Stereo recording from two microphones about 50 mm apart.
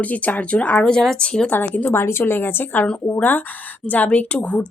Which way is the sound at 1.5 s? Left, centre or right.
Left.